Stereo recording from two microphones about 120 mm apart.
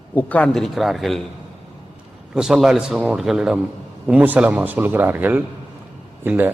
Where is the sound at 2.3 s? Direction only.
5° right (ahead or behind).